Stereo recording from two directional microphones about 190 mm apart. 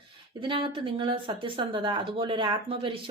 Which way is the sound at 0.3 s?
25° right (ahead or behind).